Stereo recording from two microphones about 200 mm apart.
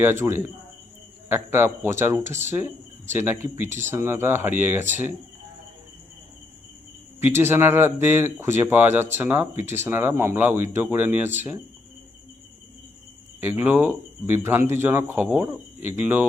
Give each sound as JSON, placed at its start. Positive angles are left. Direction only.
{"t": 0.0, "sound": "speech", "side_deg": -10}
{"t": 7.2, "sound": "speech", "side_deg": -10}
{"t": 13.4, "sound": "speech", "side_deg": -10}